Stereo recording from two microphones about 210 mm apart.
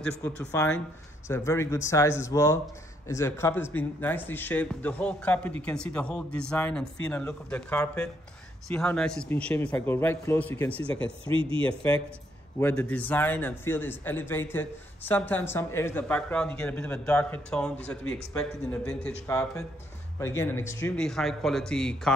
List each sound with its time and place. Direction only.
0.2 s a man's voice: 10° left (ahead or behind)
11.1 s speech: 25° right (ahead or behind)
12.5 s a man's voice: 5° left (ahead or behind)